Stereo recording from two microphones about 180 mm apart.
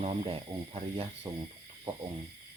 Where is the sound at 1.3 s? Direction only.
20° right (ahead or behind).